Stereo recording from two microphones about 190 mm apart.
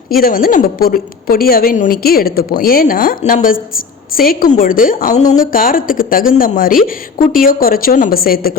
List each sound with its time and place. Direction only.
0.1 s a woman's voice: 50° left (ahead or behind)